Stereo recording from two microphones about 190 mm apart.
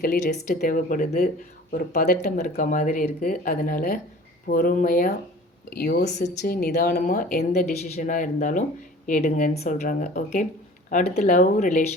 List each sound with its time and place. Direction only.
0.0 s speech: 50° left (ahead or behind)